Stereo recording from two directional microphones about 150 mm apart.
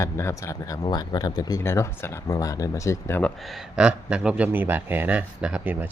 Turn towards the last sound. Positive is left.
turn(degrees=-10)  # may be behind; listen again after turning